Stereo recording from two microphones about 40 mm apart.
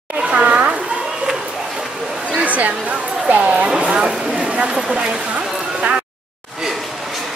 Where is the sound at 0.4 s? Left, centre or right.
Right.